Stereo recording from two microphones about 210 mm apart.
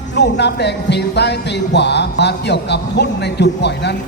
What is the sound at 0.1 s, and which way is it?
Music, 55° left (ahead or behind).